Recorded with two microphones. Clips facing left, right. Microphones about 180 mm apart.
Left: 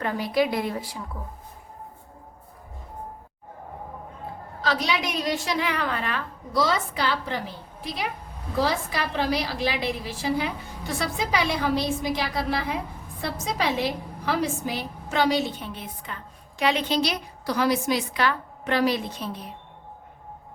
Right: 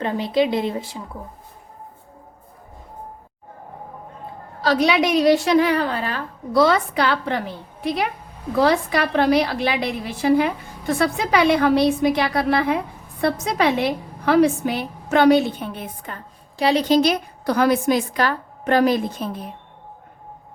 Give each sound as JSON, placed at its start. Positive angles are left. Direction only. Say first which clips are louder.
{"t": 0.0, "sound": "a woman's voice", "louder": "right 4 dB", "side_deg": -25}
{"t": 4.8, "sound": "a woman's voice", "louder": "right 10 dB", "side_deg": -70}
{"t": 5.5, "sound": "a woman's voice", "louder": "right 9 dB", "side_deg": -40}
{"t": 6.5, "sound": "a woman's voice", "louder": "right 7 dB", "side_deg": -60}
{"t": 16.6, "sound": "a woman's voice", "louder": "right 7 dB", "side_deg": -35}